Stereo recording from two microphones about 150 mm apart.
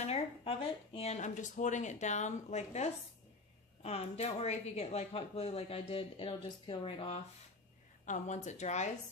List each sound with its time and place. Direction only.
0.0 s a woman's voice: 40° left (ahead or behind)
8.0 s speech: 55° left (ahead or behind)